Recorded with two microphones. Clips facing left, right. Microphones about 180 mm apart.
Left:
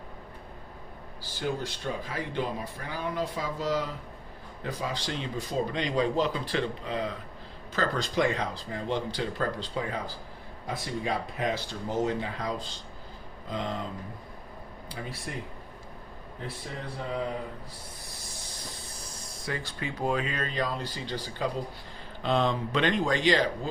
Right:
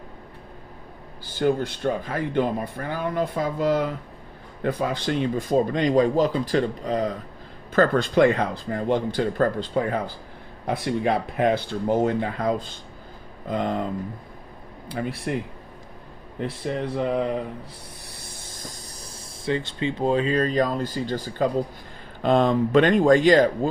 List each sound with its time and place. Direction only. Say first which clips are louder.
1.4 s speech: right 10 dB; 55° right (ahead or behind)
7.7 s speech: right 10 dB; 55° right (ahead or behind)
14.8 s speech: right 10 dB; 60° right (ahead or behind)
16.4 s speech: right 11 dB; 75° right (ahead or behind)
18.3 s hiss: right 3 dB; 45° right (ahead or behind)
19.5 s speech: right 9 dB; 25° right (ahead or behind); by 23.5 s 45° right (ahead or behind)